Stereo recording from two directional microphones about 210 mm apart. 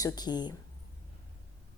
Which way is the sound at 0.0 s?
20° left (ahead or behind).